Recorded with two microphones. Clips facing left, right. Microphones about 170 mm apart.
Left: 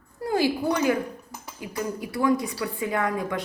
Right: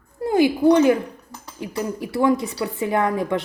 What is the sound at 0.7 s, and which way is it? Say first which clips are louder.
Speech: right 8 dB; 25° right (ahead or behind).